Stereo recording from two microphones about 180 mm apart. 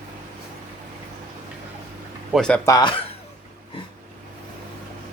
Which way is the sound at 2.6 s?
20° left (ahead or behind).